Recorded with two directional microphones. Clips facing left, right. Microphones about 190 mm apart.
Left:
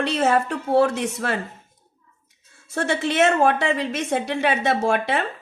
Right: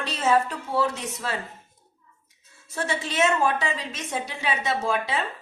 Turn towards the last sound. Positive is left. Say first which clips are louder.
# left 5 dB
turn(degrees=65)  # may be behind; listen again after turning